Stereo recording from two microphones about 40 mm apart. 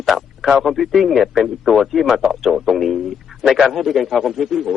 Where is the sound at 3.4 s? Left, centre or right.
Right.